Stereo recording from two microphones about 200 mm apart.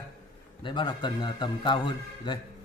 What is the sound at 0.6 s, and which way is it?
Speech, 25° left (ahead or behind).